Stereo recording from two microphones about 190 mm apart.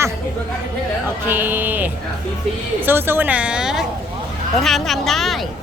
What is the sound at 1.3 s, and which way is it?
A woman's voice, 10° right (ahead or behind).